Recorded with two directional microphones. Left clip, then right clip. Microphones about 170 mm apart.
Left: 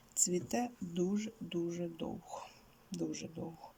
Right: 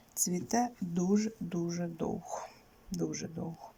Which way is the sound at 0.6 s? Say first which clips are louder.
Right 4 dB; centre (ahead or behind).